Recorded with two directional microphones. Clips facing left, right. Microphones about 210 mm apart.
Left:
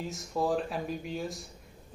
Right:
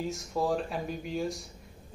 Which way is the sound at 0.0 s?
Centre (ahead or behind).